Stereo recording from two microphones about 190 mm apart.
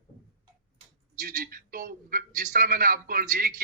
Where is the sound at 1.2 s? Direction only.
50° right (ahead or behind).